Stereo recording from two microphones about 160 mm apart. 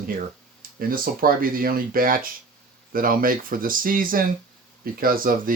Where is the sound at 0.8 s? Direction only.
65° right (ahead or behind).